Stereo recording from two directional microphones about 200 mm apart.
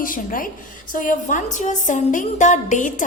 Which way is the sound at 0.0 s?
45° left (ahead or behind).